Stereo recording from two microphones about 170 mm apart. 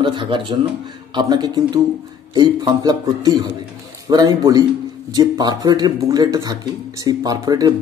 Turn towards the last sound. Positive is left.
turn(degrees=-20)  # may be behind; listen again after turning